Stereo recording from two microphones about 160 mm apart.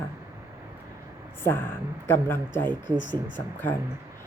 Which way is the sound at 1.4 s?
15° left (ahead or behind).